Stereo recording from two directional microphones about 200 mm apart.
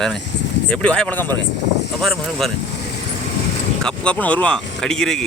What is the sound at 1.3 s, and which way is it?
Speech, 60° left (ahead or behind).